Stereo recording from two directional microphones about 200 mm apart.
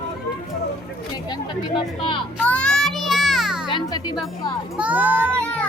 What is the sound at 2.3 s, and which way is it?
Music, 5° left (ahead or behind).